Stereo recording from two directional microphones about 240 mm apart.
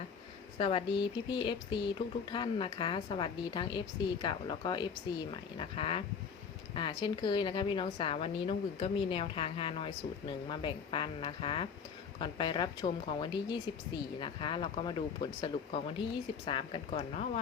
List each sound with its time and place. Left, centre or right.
0.6 s speech: left
7.0 s speech: centre